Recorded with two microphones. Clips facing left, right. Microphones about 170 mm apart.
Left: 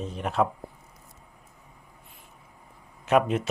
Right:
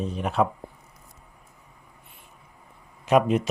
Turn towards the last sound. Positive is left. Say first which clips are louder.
# right 2 dB
turn(degrees=-15)  # may be behind; listen again after turning